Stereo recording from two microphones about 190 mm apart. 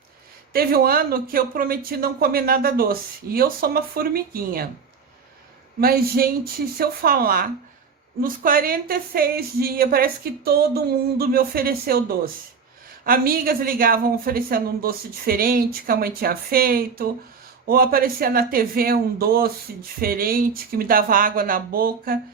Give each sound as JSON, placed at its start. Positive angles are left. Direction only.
{"t": 0.5, "sound": "speech", "side_deg": -55}
{"t": 5.8, "sound": "speech", "side_deg": -50}